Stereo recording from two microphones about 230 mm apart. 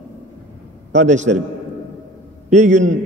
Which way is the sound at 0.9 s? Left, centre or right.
Right.